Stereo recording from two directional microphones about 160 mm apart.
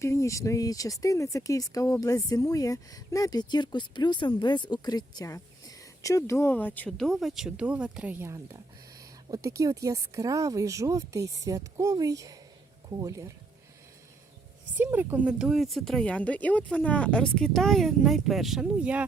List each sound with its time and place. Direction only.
0.0 s speech: 20° left (ahead or behind); by 13.3 s 20° right (ahead or behind)
14.8 s speech: 10° right (ahead or behind)